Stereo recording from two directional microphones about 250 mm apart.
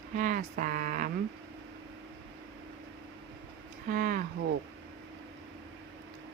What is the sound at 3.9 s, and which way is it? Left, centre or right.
Speech, right.